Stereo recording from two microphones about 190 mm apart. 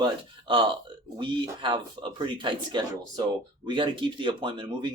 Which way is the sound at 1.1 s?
25° right (ahead or behind).